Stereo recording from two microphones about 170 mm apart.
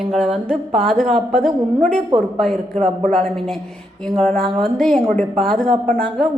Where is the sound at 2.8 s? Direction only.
40° right (ahead or behind).